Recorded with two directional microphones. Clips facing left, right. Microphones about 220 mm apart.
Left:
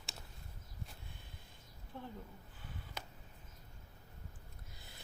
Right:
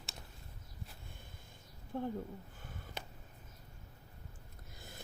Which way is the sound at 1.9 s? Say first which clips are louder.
Right 10 dB; 50° right (ahead or behind).